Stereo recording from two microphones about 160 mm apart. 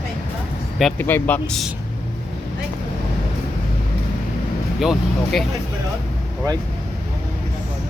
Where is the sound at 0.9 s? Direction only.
10° left (ahead or behind).